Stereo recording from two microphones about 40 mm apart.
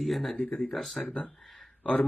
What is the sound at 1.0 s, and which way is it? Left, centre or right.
Speech, left.